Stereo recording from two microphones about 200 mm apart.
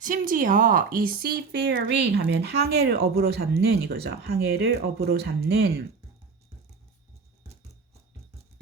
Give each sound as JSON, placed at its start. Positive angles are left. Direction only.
{"t": 0.0, "sound": "speech", "side_deg": -40}